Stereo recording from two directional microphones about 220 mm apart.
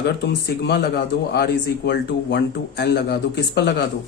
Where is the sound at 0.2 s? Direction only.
50° left (ahead or behind).